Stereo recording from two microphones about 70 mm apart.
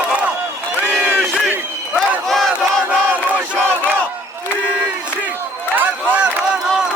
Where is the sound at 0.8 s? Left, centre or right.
Right.